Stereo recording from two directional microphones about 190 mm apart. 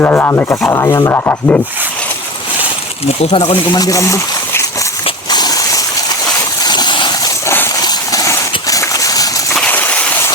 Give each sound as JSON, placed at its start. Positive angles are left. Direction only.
{"t": 0.0, "sound": "rub", "side_deg": 10}
{"t": 3.2, "sound": "speech", "side_deg": 35}
{"t": 3.8, "sound": "speech", "side_deg": 15}
{"t": 5.0, "sound": "a sound", "side_deg": 20}